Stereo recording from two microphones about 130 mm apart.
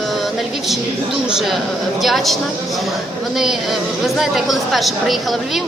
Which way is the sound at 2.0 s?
Centre (ahead or behind).